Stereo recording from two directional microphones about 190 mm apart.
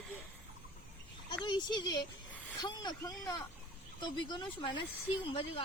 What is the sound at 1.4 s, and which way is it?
Speech, 25° left (ahead or behind).